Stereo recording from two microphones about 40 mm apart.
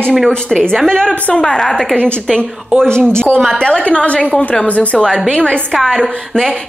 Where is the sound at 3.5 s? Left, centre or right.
Left.